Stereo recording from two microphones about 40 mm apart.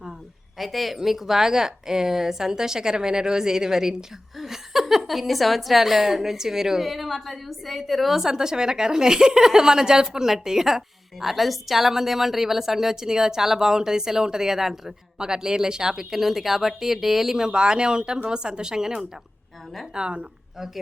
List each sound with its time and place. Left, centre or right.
0.6 s a woman's voice: centre; by 20.2 s right